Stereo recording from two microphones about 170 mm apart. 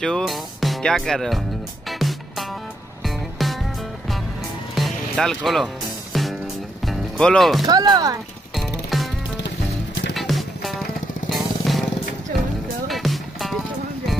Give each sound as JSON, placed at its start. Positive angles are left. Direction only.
{"t": 0.0, "sound": "speech", "side_deg": 0}
{"t": 1.9, "sound": "music", "side_deg": 0}
{"t": 4.7, "sound": "music", "side_deg": 0}
{"t": 7.6, "sound": "speech", "side_deg": -25}
{"t": 8.5, "sound": "music", "side_deg": 0}
{"t": 10.1, "sound": "music", "side_deg": 0}
{"t": 12.8, "sound": "music", "side_deg": 0}